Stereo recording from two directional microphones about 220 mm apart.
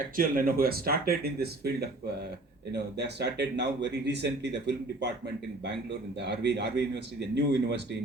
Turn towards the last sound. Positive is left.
turn(degrees=-50)  # may be behind; listen again after turning